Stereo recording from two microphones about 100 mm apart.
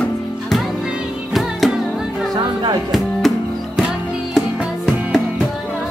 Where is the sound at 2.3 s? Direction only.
45° right (ahead or behind).